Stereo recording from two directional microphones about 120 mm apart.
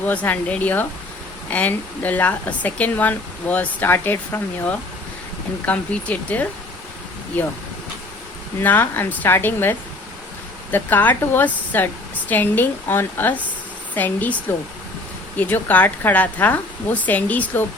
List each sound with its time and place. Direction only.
0.0 s speech: 15° left (ahead or behind)
8.6 s speech: 15° left (ahead or behind)
15.4 s speech: 15° left (ahead or behind)